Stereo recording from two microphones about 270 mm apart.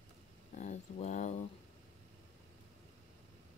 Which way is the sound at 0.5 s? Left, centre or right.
Left.